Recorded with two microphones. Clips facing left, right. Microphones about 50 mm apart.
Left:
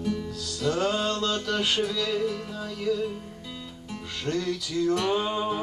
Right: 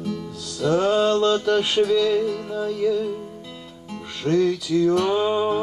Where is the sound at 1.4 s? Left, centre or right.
Right.